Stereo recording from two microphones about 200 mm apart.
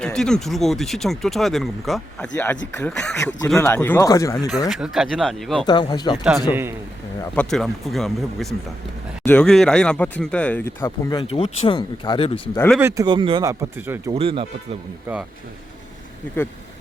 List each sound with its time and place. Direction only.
0.0 s speech: 5° left (ahead or behind)
3.2 s speech: 15° left (ahead or behind)
4.7 s speech: centre (ahead or behind)
5.6 s speech: 20° left (ahead or behind)
6.5 s speech: 10° right (ahead or behind)
7.3 s speech: centre (ahead or behind); by 11.3 s 20° left (ahead or behind)
11.3 s speech: 30° left (ahead or behind)
12.5 s speech: 5° left (ahead or behind)
12.8 s speech: 15° right (ahead or behind)
14.1 s speech: 25° right (ahead or behind)
15.1 s speech: 10° right (ahead or behind)